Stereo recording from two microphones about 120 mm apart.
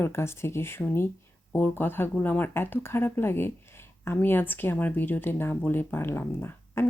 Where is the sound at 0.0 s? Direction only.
20° left (ahead or behind).